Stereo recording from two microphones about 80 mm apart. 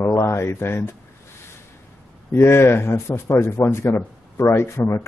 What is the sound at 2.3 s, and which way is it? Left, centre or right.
Speech, left.